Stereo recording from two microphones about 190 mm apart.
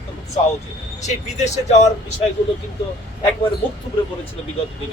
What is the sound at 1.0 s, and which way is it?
Speech, 40° left (ahead or behind).